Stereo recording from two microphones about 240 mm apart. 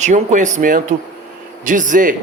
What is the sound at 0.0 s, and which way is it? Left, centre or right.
Speech, right.